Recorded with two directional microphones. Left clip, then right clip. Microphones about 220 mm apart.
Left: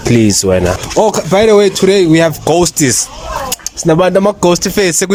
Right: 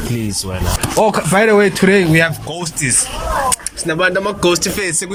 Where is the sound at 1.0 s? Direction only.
25° left (ahead or behind).